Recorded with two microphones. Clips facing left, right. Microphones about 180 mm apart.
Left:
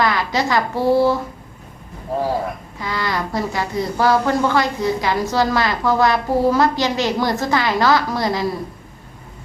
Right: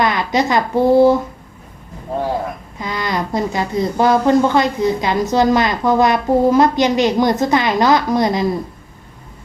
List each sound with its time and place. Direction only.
0.0 s a woman's voice: 20° right (ahead or behind)
2.7 s a woman's voice: 20° right (ahead or behind)